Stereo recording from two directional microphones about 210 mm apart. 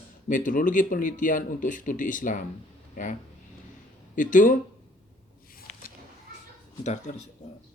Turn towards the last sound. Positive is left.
turn(degrees=35)  # may be behind; listen again after turning